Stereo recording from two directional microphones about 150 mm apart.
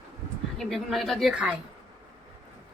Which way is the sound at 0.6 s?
Centre (ahead or behind).